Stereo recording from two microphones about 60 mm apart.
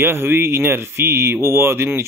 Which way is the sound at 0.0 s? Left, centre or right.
Right.